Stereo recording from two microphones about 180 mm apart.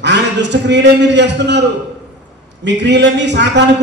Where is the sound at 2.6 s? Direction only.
75° right (ahead or behind).